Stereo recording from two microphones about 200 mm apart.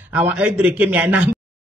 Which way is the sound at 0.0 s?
5° right (ahead or behind).